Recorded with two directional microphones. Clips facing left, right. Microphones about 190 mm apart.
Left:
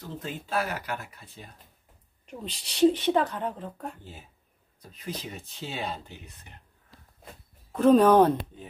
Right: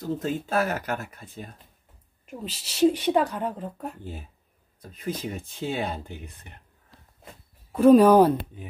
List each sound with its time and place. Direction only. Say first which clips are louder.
0.0 s speech: right 9 dB; 45° right (ahead or behind)
2.2 s a woman's voice: right 2 dB; 5° right (ahead or behind)
4.9 s speech: right 6 dB; 55° right (ahead or behind)
7.7 s a woman's voice: right 3 dB; 10° right (ahead or behind)